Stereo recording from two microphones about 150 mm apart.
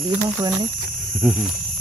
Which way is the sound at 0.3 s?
25° right (ahead or behind).